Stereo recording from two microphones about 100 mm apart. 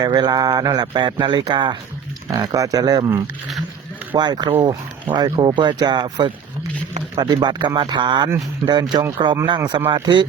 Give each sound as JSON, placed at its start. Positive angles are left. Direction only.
{"t": 0.0, "sound": "speech", "side_deg": -45}
{"t": 2.4, "sound": "speech", "side_deg": -40}
{"t": 4.1, "sound": "speech", "side_deg": -50}
{"t": 7.3, "sound": "speech", "side_deg": -50}
{"t": 8.6, "sound": "speech", "side_deg": -40}